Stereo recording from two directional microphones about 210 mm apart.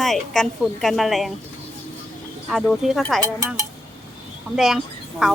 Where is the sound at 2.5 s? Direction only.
Centre (ahead or behind).